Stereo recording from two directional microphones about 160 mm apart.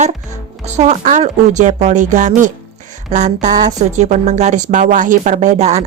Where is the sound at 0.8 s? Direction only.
50° right (ahead or behind).